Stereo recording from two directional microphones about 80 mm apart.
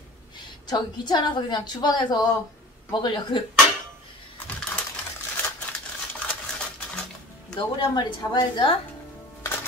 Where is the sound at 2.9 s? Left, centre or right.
Left.